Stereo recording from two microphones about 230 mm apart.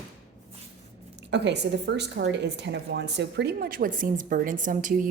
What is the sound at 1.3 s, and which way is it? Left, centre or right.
A woman's voice, right.